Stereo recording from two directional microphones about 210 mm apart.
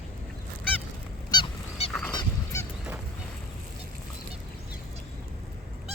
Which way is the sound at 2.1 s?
15° left (ahead or behind).